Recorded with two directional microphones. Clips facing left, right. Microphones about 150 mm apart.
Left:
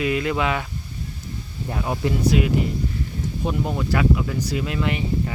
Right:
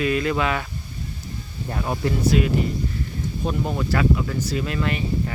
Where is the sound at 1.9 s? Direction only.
15° left (ahead or behind).